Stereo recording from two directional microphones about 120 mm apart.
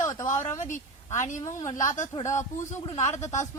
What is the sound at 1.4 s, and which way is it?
Speech, 25° left (ahead or behind).